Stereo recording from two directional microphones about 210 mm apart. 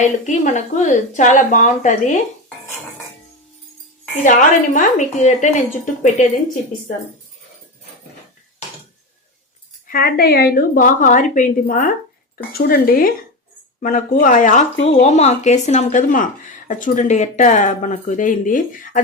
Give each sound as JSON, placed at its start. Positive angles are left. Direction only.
{"t": 0.0, "sound": "a woman's voice", "side_deg": 35}
{"t": 4.2, "sound": "a woman's voice", "side_deg": 40}
{"t": 9.8, "sound": "a woman's voice", "side_deg": 45}